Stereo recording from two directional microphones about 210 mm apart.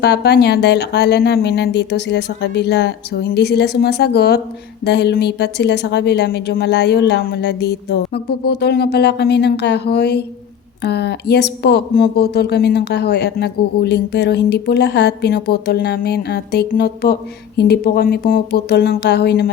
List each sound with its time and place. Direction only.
0.0 s a woman's voice: 50° left (ahead or behind)